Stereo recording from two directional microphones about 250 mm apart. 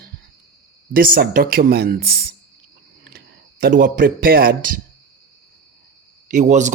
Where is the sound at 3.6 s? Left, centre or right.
Right.